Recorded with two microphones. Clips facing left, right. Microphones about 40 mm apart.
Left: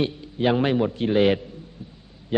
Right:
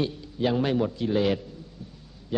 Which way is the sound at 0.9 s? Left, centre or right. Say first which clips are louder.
Left 5 dB; left.